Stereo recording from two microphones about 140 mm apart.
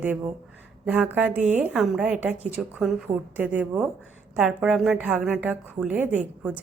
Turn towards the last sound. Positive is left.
turn(degrees=-10)  # may be behind; listen again after turning